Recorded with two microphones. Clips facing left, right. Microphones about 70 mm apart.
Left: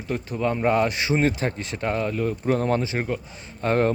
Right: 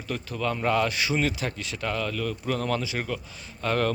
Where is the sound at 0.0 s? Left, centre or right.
Left.